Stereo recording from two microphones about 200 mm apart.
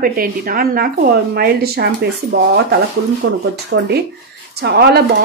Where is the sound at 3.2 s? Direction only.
70° right (ahead or behind).